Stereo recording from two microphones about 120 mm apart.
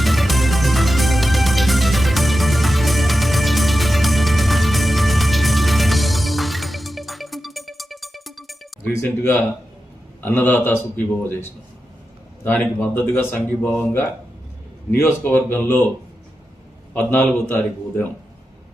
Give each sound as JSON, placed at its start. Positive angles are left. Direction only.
{"t": 0.0, "sound": "music", "side_deg": 0}
{"t": 8.9, "sound": "speech", "side_deg": 20}
{"t": 12.5, "sound": "a man's voice", "side_deg": 15}
{"t": 16.9, "sound": "speech", "side_deg": 15}